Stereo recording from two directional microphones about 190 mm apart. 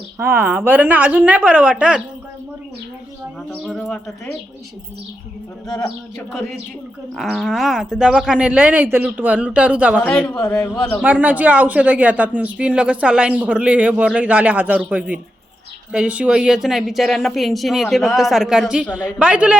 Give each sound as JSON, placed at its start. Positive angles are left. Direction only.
{"t": 0.2, "sound": "speech", "side_deg": -10}
{"t": 3.5, "sound": "speech", "side_deg": 0}
{"t": 5.6, "sound": "speech", "side_deg": 20}
{"t": 7.2, "sound": "speech", "side_deg": 0}
{"t": 10.0, "sound": "speech", "side_deg": 5}
{"t": 10.4, "sound": "speech", "side_deg": 15}
{"t": 11.0, "sound": "speech", "side_deg": -10}